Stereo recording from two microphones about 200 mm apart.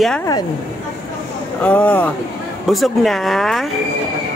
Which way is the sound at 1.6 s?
5° left (ahead or behind).